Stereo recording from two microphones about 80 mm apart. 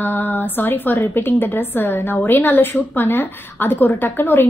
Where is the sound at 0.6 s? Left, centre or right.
Left.